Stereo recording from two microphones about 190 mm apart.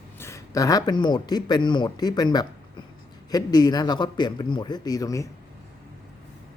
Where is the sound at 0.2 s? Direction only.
15° left (ahead or behind).